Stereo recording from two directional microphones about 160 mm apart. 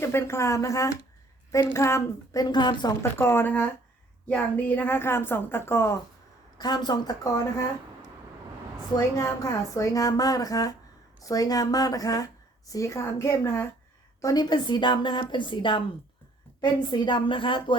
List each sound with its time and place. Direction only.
0.0 s a woman's voice: 15° left (ahead or behind)
6.6 s speech: 25° left (ahead or behind)
9.1 s a woman's voice: 20° left (ahead or behind)